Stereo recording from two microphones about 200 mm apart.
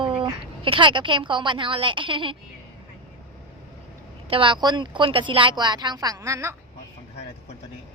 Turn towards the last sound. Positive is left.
turn(degrees=-15)  # may be behind; listen again after turning